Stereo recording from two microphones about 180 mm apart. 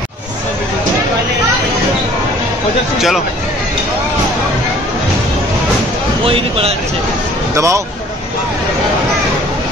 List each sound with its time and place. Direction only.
6.2 s speech: 30° right (ahead or behind)
7.5 s speech: 15° right (ahead or behind)